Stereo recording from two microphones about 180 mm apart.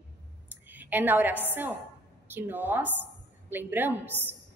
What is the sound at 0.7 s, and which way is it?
A woman's voice, 10° right (ahead or behind).